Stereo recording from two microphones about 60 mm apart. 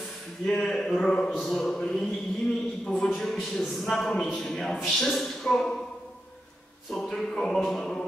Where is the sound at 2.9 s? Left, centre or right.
Centre.